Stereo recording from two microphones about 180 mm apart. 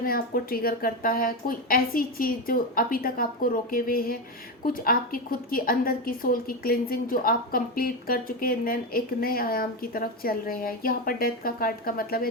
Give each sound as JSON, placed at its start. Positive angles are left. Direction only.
{"t": 0.0, "sound": "a woman's voice", "side_deg": 55}